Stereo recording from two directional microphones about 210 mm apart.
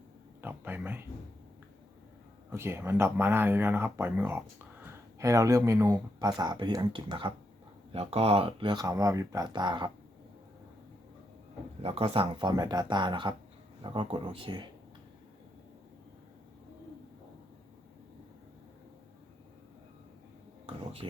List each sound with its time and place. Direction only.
0.4 s speech: 10° right (ahead or behind)
2.5 s speech: 10° right (ahead or behind)
11.8 s speech: 25° right (ahead or behind)
21.0 s speech: 25° right (ahead or behind)